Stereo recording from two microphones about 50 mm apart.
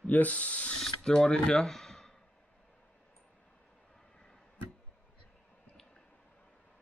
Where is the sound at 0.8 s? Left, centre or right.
Centre.